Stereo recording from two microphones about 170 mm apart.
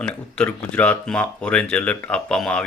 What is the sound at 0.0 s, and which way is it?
Speech, 5° left (ahead or behind).